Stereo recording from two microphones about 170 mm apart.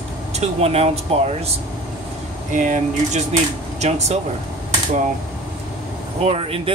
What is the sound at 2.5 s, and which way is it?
Speech, 45° right (ahead or behind).